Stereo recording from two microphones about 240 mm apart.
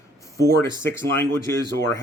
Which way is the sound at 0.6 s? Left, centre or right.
Centre.